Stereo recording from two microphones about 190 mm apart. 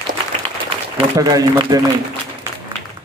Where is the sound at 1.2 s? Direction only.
20° right (ahead or behind).